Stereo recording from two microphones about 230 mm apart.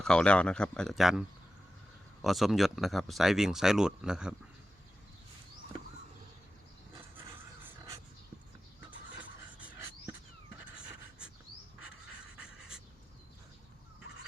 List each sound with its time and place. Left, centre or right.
0.0 s speech: centre
2.2 s speech: centre
9.1 s music: centre
12.4 s pant: centre